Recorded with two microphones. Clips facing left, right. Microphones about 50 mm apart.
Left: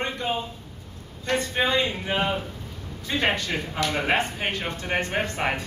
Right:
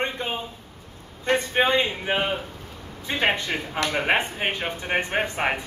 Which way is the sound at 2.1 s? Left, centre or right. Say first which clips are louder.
Right 1 dB; centre.